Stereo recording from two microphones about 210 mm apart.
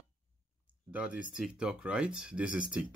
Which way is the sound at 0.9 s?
5° right (ahead or behind).